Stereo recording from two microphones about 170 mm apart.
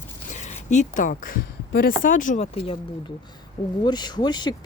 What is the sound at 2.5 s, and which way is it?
Speech, 35° left (ahead or behind).